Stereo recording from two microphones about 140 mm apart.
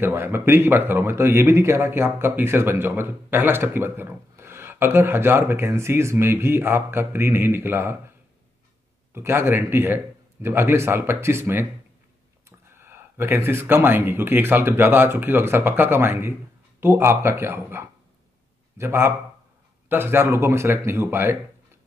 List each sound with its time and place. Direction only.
0.0 s speech: 15° right (ahead or behind)
9.1 s speech: 15° right (ahead or behind)